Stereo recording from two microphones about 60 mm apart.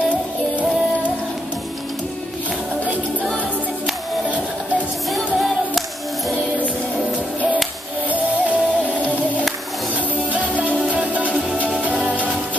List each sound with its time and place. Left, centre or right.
5.1 s music: centre
8.1 s music: right